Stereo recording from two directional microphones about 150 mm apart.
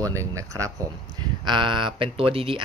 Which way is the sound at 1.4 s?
30° right (ahead or behind).